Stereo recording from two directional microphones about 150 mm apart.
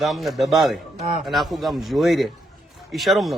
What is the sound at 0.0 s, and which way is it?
Speech, centre (ahead or behind).